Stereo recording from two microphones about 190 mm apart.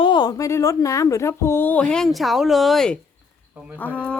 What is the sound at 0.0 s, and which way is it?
A woman's voice, 25° left (ahead or behind).